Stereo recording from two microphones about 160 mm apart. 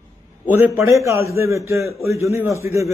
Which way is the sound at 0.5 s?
10° right (ahead or behind).